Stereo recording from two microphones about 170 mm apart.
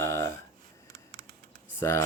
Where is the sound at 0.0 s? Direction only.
15° left (ahead or behind).